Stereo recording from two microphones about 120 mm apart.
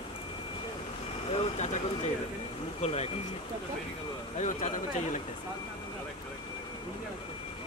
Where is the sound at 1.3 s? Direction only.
70° left (ahead or behind).